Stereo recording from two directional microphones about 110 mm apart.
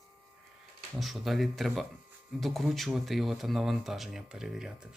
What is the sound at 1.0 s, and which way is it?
Speech, centre (ahead or behind).